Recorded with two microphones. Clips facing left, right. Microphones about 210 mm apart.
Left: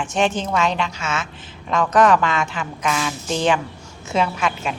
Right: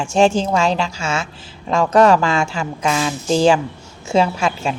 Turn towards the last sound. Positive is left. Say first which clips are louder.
# right 3 dB
turn(degrees=-30)  # may be behind; listen again after turning